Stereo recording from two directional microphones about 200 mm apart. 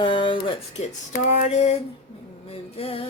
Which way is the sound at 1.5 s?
35° left (ahead or behind).